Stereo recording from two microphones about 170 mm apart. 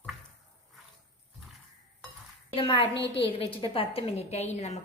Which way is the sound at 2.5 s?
30° left (ahead or behind).